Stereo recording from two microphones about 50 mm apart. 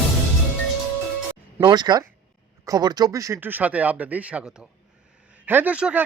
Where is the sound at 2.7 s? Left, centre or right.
Right.